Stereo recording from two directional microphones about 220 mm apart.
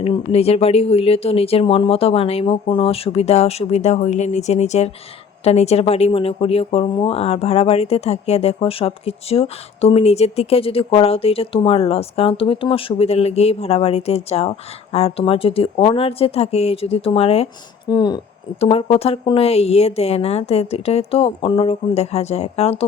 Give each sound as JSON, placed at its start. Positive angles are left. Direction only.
{"t": 0.0, "sound": "speech", "side_deg": 25}